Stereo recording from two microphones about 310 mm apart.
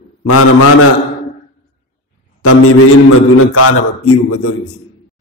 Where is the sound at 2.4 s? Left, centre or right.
Left.